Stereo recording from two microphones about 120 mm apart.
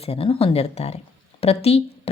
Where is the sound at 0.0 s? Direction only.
55° left (ahead or behind).